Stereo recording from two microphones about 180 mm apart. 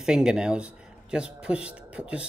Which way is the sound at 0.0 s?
5° right (ahead or behind).